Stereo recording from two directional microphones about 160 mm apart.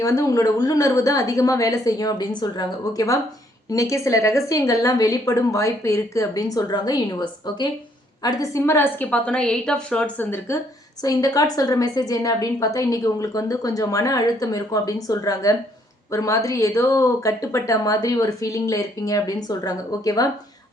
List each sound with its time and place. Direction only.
0.0 s a woman's voice: 20° left (ahead or behind)
11.0 s a woman's voice: 25° left (ahead or behind)